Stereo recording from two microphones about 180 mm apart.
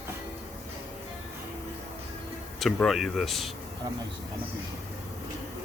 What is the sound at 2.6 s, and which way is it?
Speech, centre (ahead or behind).